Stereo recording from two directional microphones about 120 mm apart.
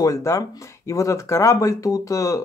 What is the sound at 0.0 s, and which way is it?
Speech, 30° left (ahead or behind).